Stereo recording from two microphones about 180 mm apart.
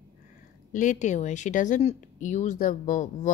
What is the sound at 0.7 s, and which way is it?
Speech, 45° left (ahead or behind).